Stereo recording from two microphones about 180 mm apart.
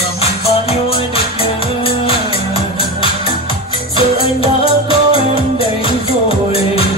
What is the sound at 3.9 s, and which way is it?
Music, 30° left (ahead or behind).